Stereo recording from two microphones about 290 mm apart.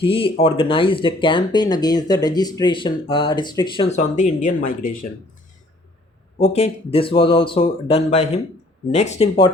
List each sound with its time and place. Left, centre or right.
0.0 s speech: centre
6.4 s speech: left